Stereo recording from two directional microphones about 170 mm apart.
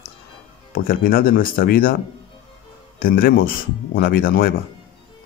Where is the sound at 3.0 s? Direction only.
55° left (ahead or behind).